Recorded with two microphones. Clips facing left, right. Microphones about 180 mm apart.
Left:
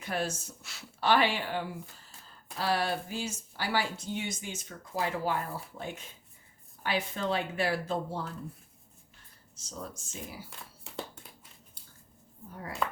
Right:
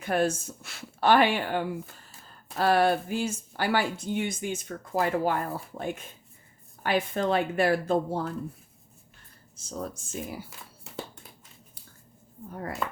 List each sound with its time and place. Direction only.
0.0 s speech: 50° right (ahead or behind)
9.6 s speech: 50° right (ahead or behind)
10.5 s a sound: centre (ahead or behind)
12.8 s speech: centre (ahead or behind)